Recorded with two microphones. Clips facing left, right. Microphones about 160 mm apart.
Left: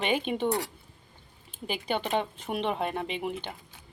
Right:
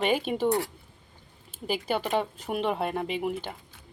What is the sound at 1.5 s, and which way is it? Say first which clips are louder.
Speech: right 3 dB; 5° right (ahead or behind).